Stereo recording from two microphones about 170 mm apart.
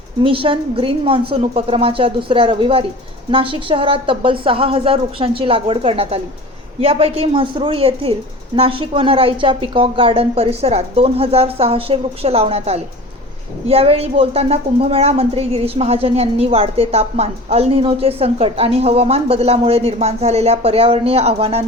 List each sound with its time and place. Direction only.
0.2 s a woman's voice: 30° right (ahead or behind)